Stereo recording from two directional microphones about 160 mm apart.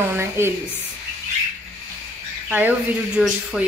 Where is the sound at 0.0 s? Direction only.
15° right (ahead or behind).